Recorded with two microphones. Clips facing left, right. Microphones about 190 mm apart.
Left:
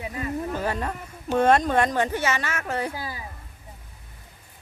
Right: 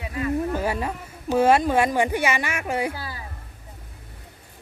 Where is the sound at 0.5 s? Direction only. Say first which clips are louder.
Right 2 dB; 10° right (ahead or behind).